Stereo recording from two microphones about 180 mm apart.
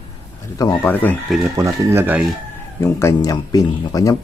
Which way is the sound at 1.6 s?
15° right (ahead or behind).